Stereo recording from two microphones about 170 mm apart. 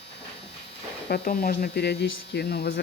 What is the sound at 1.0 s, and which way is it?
Speech, 60° left (ahead or behind).